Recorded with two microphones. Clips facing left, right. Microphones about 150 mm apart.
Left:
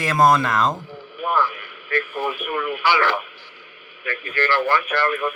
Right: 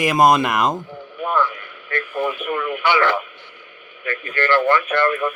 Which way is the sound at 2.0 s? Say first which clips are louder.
Right 3 dB; 20° left (ahead or behind).